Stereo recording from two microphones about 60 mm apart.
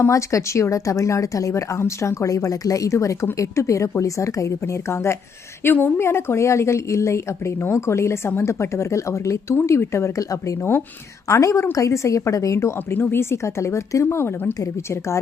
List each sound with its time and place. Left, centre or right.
0.1 s speech: left
5.6 s a woman's voice: left
12.9 s speech: left
13.3 s a woman's voice: left